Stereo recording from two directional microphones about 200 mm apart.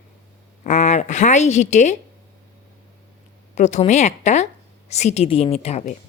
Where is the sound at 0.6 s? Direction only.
35° left (ahead or behind).